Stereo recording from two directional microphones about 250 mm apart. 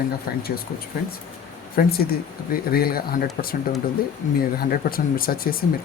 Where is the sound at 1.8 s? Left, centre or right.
Left.